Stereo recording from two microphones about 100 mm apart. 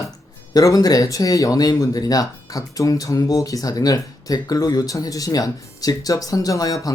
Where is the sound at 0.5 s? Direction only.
35° left (ahead or behind).